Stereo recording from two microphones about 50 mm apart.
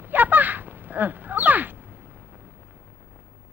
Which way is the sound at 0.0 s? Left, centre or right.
Right.